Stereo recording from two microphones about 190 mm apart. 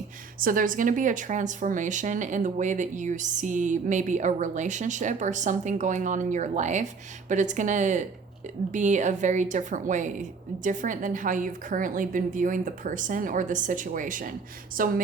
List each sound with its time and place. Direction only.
0.3 s a woman's voice: 45° right (ahead or behind)